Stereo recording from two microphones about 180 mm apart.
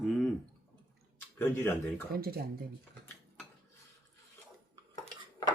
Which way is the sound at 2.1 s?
60° right (ahead or behind).